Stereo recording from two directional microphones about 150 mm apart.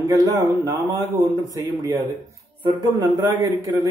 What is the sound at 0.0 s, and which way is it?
Speech, 25° right (ahead or behind).